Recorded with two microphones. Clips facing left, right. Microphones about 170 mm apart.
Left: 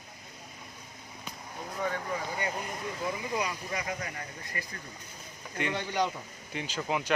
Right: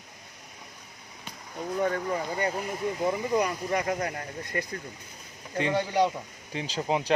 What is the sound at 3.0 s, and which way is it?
Speech, 50° right (ahead or behind).